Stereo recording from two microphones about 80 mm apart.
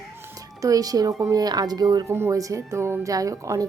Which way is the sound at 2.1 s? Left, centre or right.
Right.